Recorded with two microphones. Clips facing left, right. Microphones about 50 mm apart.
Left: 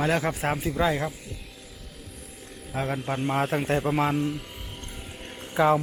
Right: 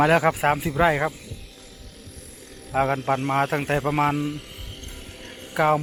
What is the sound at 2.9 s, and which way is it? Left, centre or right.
A man's voice, centre.